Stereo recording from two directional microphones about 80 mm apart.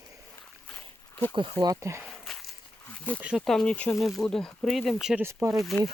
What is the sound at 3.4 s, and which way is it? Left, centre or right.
Speech, centre.